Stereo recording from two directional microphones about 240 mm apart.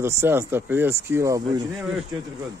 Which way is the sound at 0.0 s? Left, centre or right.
Centre.